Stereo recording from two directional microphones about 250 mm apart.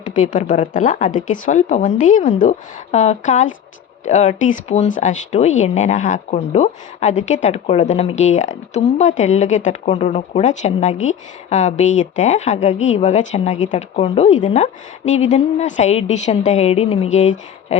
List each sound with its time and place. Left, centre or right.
0.0 s speech: left